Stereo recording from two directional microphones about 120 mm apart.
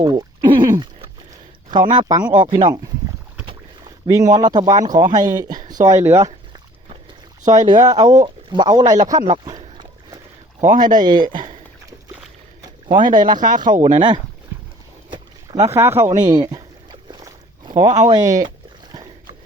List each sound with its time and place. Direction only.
0.0 s a sound: 35° right (ahead or behind)
1.7 s speech: 40° right (ahead or behind)
4.0 s speech: 30° right (ahead or behind)
7.4 s speech: 30° right (ahead or behind)
10.6 s speech: 90° right
11.0 s speech: 40° right (ahead or behind)
12.6 s a sound: 40° right (ahead or behind)
13.1 s speech: 40° right (ahead or behind)
13.7 s speech: 90° right
15.1 s boat: 40° right (ahead or behind)
15.7 s speech: 20° right (ahead or behind)
16.2 s boat: 35° right (ahead or behind)
18.1 s speech: 30° right (ahead or behind)
18.4 s rowboat: 40° right (ahead or behind)